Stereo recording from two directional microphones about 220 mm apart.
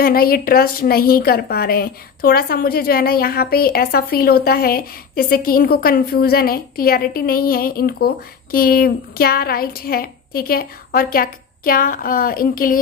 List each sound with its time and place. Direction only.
0.0 s a woman's voice: 40° left (ahead or behind)